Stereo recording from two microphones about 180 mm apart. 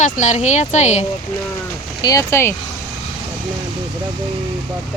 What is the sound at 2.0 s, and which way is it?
Speech, 15° left (ahead or behind).